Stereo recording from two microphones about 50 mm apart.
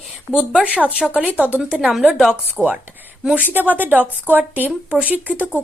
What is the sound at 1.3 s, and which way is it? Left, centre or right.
Speech, right.